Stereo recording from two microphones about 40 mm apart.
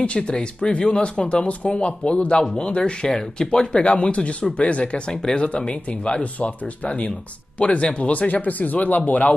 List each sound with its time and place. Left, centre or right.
0.0 s speech: left